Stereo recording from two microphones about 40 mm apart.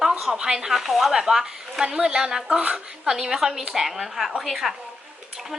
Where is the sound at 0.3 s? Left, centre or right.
Centre.